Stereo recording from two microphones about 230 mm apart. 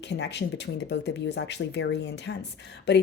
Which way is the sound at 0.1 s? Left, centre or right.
Left.